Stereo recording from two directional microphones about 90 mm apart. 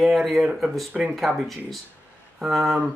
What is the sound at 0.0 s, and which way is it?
Speech, centre (ahead or behind).